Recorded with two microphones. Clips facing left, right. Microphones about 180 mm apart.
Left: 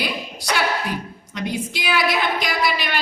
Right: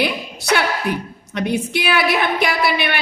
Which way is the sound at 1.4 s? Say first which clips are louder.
Right 6 dB; 60° right (ahead or behind).